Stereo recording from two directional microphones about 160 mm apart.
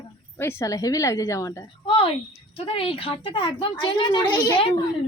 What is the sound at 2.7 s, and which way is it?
A woman's voice, 35° left (ahead or behind).